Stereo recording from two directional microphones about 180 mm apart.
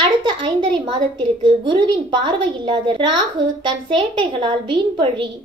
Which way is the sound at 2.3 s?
25° right (ahead or behind).